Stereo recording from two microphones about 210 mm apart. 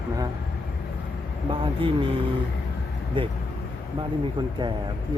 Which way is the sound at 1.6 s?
25° right (ahead or behind).